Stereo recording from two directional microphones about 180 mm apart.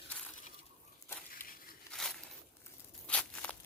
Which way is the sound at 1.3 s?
50° left (ahead or behind).